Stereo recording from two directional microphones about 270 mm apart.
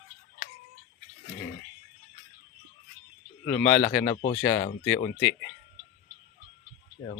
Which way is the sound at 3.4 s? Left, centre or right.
Left.